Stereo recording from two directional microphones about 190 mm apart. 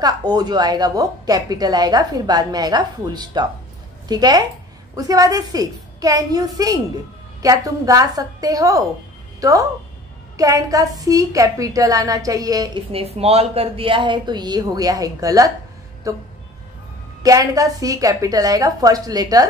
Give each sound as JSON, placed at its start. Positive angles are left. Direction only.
{"t": 0.0, "sound": "a woman's voice", "side_deg": -20}